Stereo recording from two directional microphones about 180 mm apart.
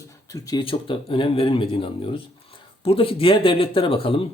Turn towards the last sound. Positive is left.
turn(degrees=30)  # may be behind; listen again after turning